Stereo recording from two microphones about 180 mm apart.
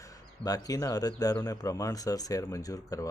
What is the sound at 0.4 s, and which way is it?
A man's voice, 20° left (ahead or behind).